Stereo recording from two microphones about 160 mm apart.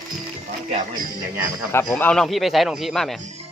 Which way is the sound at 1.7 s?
10° left (ahead or behind).